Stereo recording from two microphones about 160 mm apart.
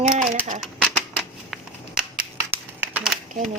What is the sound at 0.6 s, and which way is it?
Typewriter, 5° left (ahead or behind).